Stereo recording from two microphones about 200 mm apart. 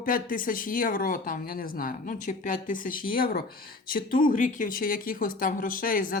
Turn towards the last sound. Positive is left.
turn(degrees=45)  # may be behind; listen again after turning